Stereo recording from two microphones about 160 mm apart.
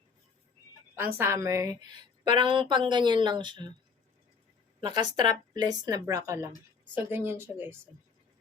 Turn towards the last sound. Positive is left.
turn(degrees=-15)  # may be behind; listen again after turning